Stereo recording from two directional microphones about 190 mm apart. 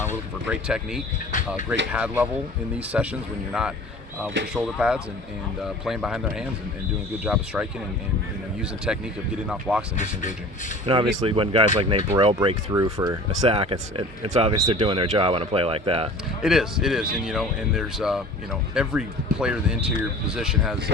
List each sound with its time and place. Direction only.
0.0 s speech: 10° right (ahead or behind)
1.3 s speech: 40° left (ahead or behind)
1.9 s speech: 5° right (ahead or behind)
8.9 s speech: 5° right (ahead or behind)
10.0 s speech: 40° left (ahead or behind)
10.8 s speech: 25° right (ahead or behind)
12.7 s speech: 20° right (ahead or behind)
13.5 s speech: 30° right (ahead or behind)
14.5 s speech: 20° right (ahead or behind)
14.8 s speech: 30° right (ahead or behind)
16.4 s speech: centre (ahead or behind)